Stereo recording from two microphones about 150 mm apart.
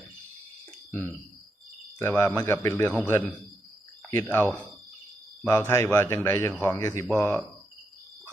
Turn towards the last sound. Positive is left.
turn(degrees=15)  # may be behind; listen again after turning